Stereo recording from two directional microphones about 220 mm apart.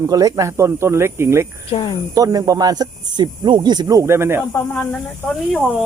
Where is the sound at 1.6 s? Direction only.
25° left (ahead or behind).